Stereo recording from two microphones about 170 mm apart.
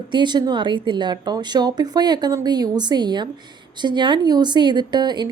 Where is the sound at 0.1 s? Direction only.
25° right (ahead or behind).